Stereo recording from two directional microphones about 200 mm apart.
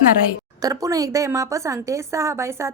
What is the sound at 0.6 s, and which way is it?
A woman's voice, 20° right (ahead or behind).